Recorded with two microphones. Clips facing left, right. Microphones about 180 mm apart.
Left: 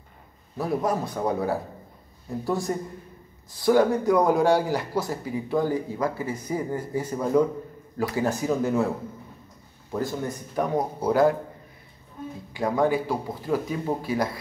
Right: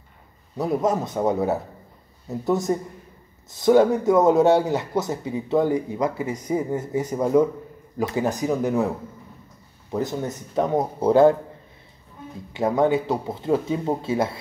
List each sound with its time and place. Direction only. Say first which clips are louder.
0.6 s speech: right 3 dB; 20° right (ahead or behind)
12.5 s speech: right 3 dB; 25° right (ahead or behind)